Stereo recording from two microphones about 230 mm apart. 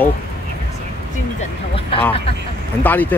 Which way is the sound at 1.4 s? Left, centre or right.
Left.